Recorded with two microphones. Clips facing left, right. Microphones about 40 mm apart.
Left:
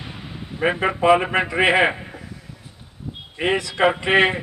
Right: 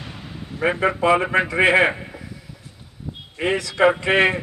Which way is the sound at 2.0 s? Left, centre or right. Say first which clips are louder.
Even; centre.